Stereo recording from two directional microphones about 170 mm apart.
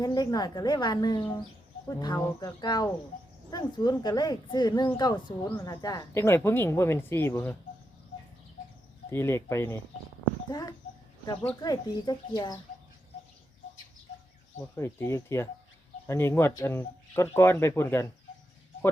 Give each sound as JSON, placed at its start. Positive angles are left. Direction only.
{"t": 0.0, "sound": "a woman's voice", "side_deg": 25}
{"t": 9.0, "sound": "a woman's voice", "side_deg": 15}
{"t": 14.6, "sound": "a woman's voice", "side_deg": 15}